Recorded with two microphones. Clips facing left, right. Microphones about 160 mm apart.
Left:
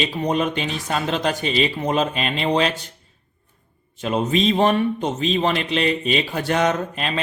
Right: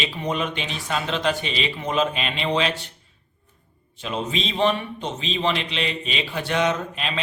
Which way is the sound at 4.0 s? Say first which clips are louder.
Left 7 dB; 50° left (ahead or behind).